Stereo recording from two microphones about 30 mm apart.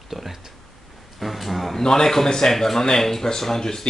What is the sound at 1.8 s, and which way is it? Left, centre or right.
Speech, centre.